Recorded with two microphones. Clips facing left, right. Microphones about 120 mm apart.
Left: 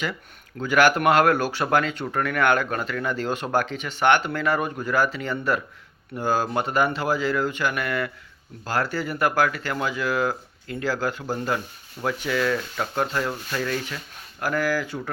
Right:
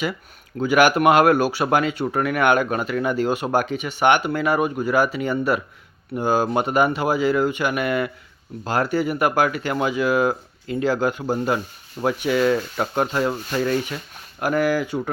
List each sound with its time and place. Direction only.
0.6 s speech: 15° right (ahead or behind)